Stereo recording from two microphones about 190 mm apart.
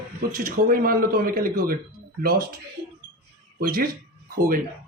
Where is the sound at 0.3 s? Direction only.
50° right (ahead or behind).